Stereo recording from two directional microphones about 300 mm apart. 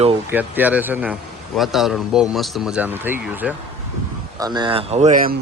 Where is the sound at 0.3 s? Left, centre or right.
Centre; by 5.4 s right.